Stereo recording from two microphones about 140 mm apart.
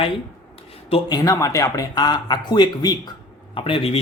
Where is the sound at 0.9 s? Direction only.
40° left (ahead or behind).